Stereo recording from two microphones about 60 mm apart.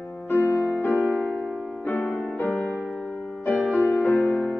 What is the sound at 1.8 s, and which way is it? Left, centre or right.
Music, left.